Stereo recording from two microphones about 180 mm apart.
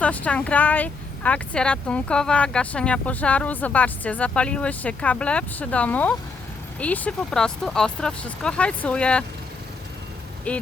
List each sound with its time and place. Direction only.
0.0 s speech: 10° left (ahead or behind)
10.5 s speech: 10° left (ahead or behind)